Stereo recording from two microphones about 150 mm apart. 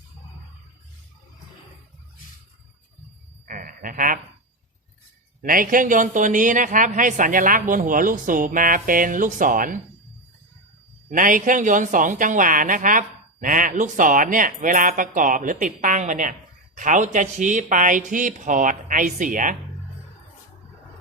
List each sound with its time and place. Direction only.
3.4 s a sound: 65° right (ahead or behind)
5.4 s speech: 65° right (ahead or behind)
11.1 s speech: 60° right (ahead or behind)